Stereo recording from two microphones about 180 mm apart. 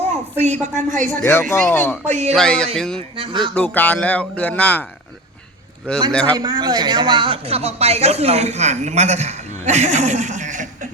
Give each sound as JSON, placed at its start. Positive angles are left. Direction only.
{"t": 0.1, "sound": "a woman's voice", "side_deg": -40}
{"t": 1.2, "sound": "speech", "side_deg": 10}
{"t": 2.0, "sound": "a man's voice", "side_deg": -40}
{"t": 2.3, "sound": "speech", "side_deg": 5}
{"t": 6.1, "sound": "speech", "side_deg": 5}
{"t": 6.3, "sound": "a man's voice", "side_deg": -20}